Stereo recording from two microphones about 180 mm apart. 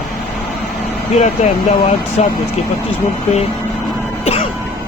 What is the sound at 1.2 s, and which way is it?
Speech, 40° left (ahead or behind).